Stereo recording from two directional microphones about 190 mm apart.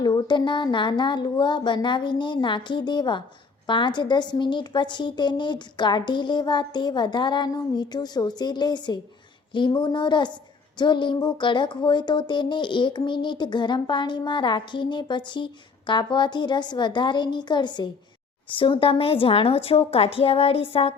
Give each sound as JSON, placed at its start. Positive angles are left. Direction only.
{"t": 0.0, "sound": "a woman's voice", "side_deg": 25}